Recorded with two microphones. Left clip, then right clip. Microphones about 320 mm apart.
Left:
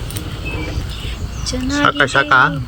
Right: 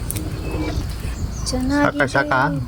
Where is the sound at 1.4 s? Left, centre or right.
Centre.